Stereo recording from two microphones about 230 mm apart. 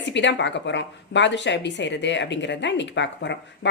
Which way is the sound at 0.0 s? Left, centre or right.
Left.